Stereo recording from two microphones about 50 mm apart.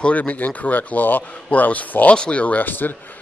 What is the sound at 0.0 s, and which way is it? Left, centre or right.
A man's voice, left.